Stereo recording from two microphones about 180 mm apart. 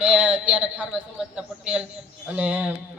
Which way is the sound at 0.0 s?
5° right (ahead or behind).